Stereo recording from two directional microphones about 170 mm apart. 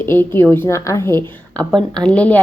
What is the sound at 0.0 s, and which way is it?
A woman's voice, 10° left (ahead or behind).